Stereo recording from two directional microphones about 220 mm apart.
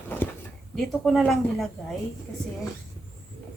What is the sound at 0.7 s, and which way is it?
Speech, centre (ahead or behind).